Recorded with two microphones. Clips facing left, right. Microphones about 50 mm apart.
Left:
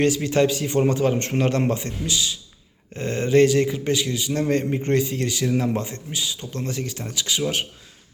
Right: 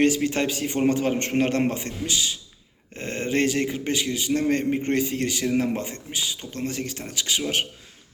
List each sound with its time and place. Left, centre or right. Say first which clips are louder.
0.0 s a man's voice: left 2 dB; right